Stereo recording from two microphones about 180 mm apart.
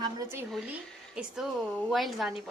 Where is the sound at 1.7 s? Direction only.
5° left (ahead or behind).